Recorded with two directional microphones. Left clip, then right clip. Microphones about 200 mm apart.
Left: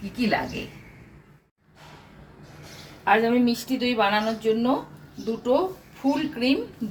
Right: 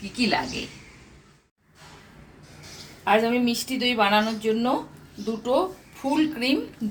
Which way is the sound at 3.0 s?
35° right (ahead or behind).